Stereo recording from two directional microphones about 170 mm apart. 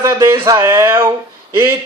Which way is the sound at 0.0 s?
15° right (ahead or behind).